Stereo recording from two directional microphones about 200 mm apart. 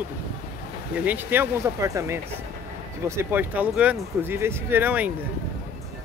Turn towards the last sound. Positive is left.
turn(degrees=-10)  # may be behind; listen again after turning